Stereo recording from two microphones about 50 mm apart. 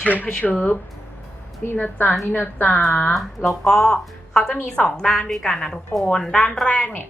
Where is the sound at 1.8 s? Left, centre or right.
Left.